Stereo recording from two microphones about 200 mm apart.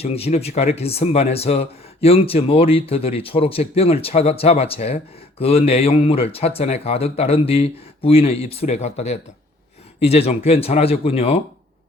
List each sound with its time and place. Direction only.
0.0 s speech: 30° left (ahead or behind)